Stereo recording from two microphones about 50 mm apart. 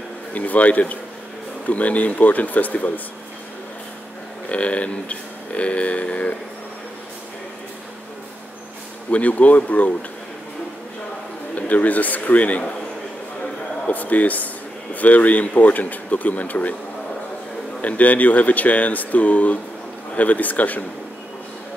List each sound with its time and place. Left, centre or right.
0.3 s speech: left
4.5 s speech: left
9.1 s speech: left
11.5 s speech: left
13.8 s speech: left
17.8 s speech: left